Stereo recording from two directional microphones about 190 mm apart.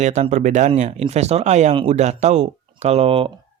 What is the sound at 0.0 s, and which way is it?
Speech, 40° right (ahead or behind).